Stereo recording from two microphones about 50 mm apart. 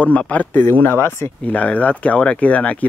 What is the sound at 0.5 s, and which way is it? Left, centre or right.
Speech, left.